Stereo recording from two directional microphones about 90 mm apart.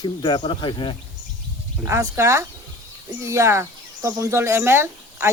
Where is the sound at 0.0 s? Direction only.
60° left (ahead or behind).